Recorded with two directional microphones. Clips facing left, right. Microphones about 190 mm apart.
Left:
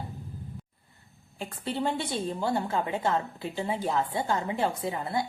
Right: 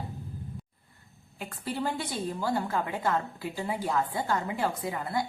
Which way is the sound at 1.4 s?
25° left (ahead or behind).